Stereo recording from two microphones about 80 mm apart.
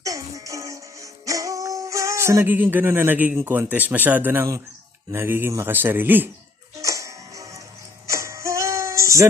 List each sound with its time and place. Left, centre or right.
0.0 s music: right
3.3 s speech: right
6.7 s music: right